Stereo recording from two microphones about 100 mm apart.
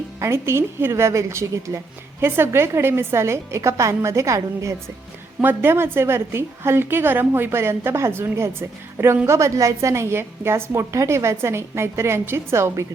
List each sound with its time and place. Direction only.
0.2 s a woman's voice: 25° right (ahead or behind)